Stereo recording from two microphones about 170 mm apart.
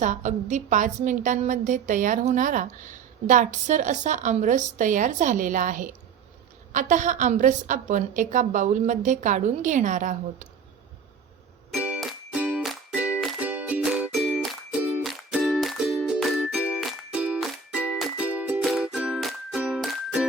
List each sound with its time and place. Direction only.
0.0 s a woman's voice: 45° right (ahead or behind)
11.7 s music: 5° right (ahead or behind)